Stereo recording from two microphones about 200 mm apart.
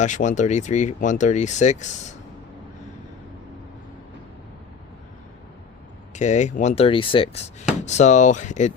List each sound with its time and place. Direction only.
0.0 s speech: 40° left (ahead or behind)
6.1 s speech: 35° left (ahead or behind)